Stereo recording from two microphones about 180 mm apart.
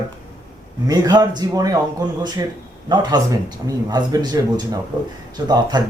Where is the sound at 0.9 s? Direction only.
20° right (ahead or behind).